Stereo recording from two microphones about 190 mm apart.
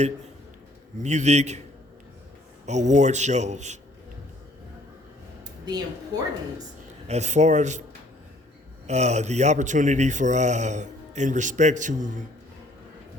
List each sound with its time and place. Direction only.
1.0 s speech: 40° right (ahead or behind)
2.6 s speech: 40° right (ahead or behind)
6.1 s a woman's voice: 20° right (ahead or behind)
7.1 s speech: 35° right (ahead or behind)
8.9 s speech: 35° right (ahead or behind)